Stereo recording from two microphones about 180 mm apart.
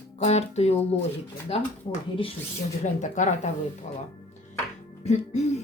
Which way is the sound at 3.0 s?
45° left (ahead or behind).